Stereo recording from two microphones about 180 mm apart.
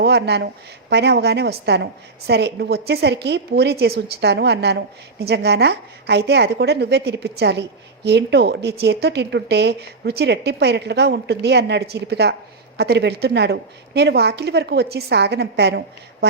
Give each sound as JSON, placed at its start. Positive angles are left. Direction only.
{"t": 0.0, "sound": "a woman's voice", "side_deg": -65}